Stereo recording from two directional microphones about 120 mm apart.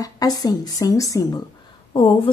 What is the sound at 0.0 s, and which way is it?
Speech, 30° left (ahead or behind).